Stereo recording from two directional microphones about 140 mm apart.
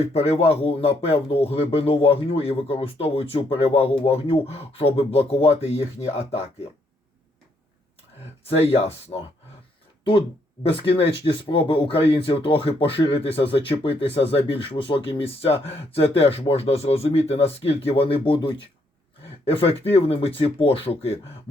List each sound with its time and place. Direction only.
0.1 s speech: 45° left (ahead or behind)
8.4 s speech: 45° left (ahead or behind)
10.0 s speech: 35° left (ahead or behind)